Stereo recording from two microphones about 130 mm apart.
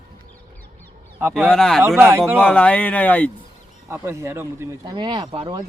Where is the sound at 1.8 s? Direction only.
20° right (ahead or behind).